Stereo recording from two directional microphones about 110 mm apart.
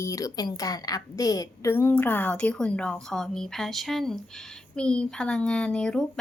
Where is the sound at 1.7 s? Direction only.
20° left (ahead or behind).